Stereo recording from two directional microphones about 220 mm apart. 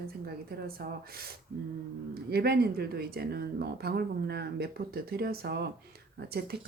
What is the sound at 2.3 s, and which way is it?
Speech, 45° right (ahead or behind).